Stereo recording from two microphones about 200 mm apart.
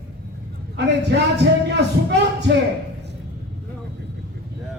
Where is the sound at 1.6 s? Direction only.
55° right (ahead or behind).